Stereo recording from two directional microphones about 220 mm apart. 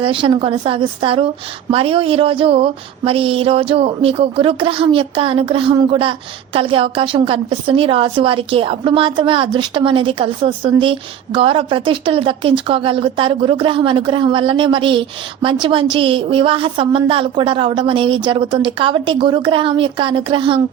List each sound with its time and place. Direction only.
0.0 s speech: 25° right (ahead or behind)